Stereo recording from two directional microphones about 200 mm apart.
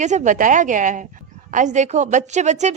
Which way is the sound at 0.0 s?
35° right (ahead or behind).